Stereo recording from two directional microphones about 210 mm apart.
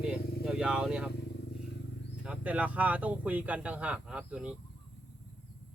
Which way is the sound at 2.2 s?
5° right (ahead or behind).